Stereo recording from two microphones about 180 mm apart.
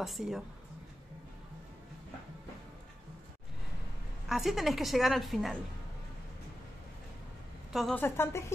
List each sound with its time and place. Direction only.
0.0 s a woman's voice: centre (ahead or behind)
4.3 s a woman's voice: centre (ahead or behind)
7.7 s a woman's voice: centre (ahead or behind)
8.0 s speech: 15° left (ahead or behind)